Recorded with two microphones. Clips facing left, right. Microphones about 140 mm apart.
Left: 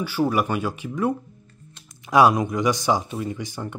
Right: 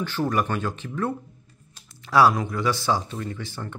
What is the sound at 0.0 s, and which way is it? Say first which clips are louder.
Speech: left 3 dB; 10° left (ahead or behind).